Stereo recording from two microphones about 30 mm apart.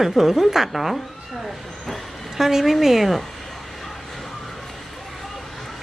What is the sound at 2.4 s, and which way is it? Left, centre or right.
Speech, centre.